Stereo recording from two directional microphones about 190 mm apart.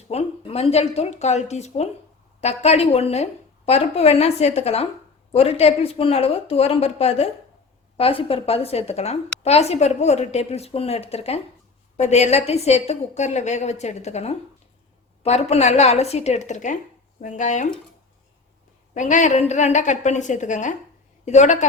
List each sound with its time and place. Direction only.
0.1 s a woman's voice: 35° left (ahead or behind)
18.9 s a woman's voice: 40° left (ahead or behind)